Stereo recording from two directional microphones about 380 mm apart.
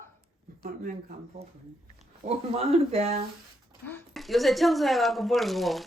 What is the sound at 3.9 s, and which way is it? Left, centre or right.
Speech, centre.